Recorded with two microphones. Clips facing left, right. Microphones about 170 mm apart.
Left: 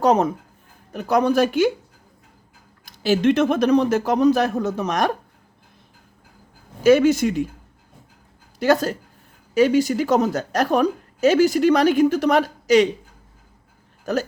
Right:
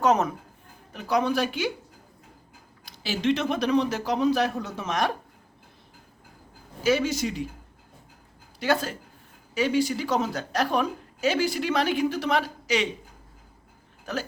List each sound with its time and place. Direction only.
0.0 s speech: 35° left (ahead or behind)
0.9 s a woman's voice: 45° left (ahead or behind)
2.8 s a woman's voice: 50° left (ahead or behind)
6.8 s a woman's voice: 55° left (ahead or behind)
8.5 s a woman's voice: 45° left (ahead or behind)
14.0 s speech: 45° left (ahead or behind)